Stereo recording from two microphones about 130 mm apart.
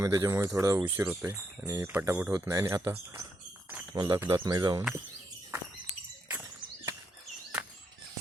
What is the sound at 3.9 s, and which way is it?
Speech, 35° right (ahead or behind).